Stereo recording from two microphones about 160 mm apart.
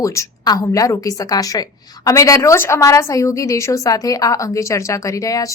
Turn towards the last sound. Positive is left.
turn(degrees=20)  # may be behind; listen again after turning